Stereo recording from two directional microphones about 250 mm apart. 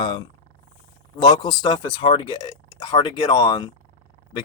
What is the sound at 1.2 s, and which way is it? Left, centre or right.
Speech, centre.